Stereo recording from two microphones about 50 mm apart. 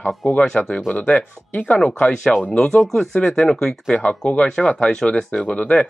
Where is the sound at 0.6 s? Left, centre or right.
Left.